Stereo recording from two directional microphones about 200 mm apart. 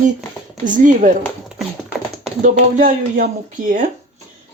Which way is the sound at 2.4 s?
40° right (ahead or behind).